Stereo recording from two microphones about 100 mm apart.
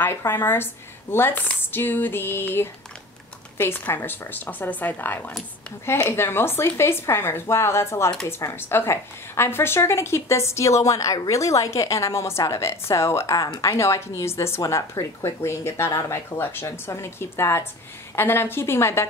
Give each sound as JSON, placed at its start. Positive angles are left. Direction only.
{"t": 0.0, "sound": "a woman's voice", "side_deg": 20}